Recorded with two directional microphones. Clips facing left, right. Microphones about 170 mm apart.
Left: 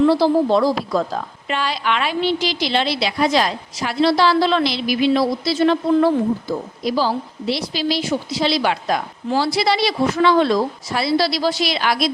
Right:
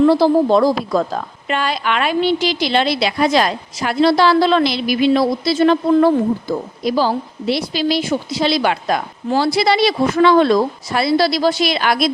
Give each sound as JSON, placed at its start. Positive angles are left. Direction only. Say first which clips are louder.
{"t": 0.0, "sound": "a woman's voice", "louder": "right 3 dB", "side_deg": -50}